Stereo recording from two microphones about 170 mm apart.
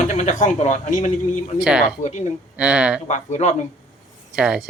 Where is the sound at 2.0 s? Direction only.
45° left (ahead or behind).